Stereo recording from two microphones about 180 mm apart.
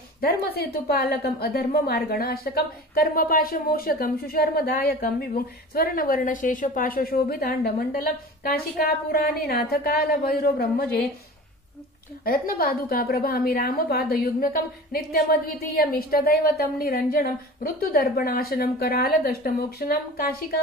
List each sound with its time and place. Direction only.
0.2 s a woman's voice: 60° left (ahead or behind)
12.3 s a woman's voice: 55° left (ahead or behind)